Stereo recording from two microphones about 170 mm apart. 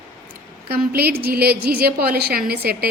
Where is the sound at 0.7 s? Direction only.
70° right (ahead or behind).